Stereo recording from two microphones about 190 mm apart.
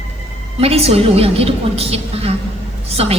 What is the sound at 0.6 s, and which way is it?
A woman's voice, 30° right (ahead or behind).